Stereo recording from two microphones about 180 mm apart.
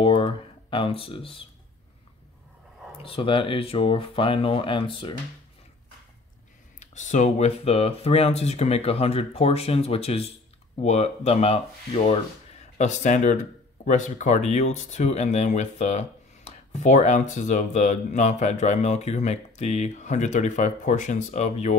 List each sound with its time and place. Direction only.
0.0 s speech: 30° left (ahead or behind)
3.0 s speech: 30° left (ahead or behind)
6.8 s speech: 40° left (ahead or behind)